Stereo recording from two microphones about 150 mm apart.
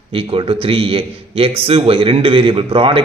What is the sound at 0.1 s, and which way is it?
A man's voice, 35° right (ahead or behind).